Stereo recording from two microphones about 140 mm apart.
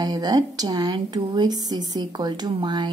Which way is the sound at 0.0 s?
25° right (ahead or behind).